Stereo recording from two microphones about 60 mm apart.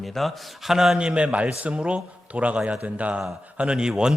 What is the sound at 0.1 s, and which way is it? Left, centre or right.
A man's voice, centre.